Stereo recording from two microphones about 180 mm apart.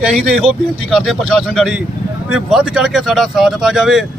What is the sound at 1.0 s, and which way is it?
Speech, centre (ahead or behind).